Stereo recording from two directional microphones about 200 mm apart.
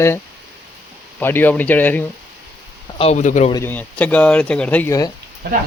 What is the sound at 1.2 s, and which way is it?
Speech, 10° left (ahead or behind).